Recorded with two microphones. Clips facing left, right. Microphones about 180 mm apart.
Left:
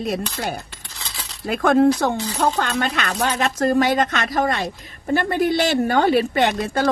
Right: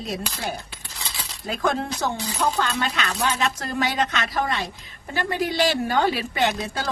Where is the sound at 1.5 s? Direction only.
60° left (ahead or behind).